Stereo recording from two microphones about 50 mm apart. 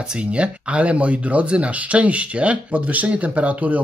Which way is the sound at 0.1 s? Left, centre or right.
Right.